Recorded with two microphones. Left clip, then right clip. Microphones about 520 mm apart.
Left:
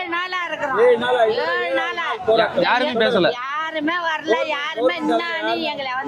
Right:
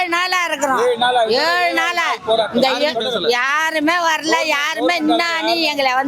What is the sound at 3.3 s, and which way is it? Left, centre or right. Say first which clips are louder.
Speech: right 7 dB; right.